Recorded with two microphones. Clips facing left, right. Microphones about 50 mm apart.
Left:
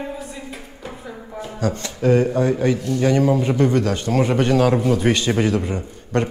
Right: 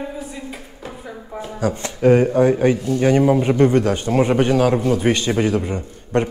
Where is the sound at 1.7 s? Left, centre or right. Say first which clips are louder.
Right 3 dB; centre.